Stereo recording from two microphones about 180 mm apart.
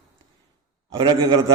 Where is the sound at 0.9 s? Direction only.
30° right (ahead or behind).